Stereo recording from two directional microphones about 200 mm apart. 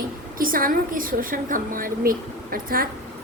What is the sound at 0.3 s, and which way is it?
A woman's voice, 45° right (ahead or behind).